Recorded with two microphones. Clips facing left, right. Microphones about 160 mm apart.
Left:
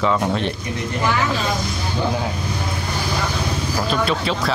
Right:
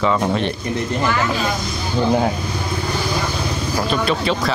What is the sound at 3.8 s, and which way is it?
Speech, centre (ahead or behind).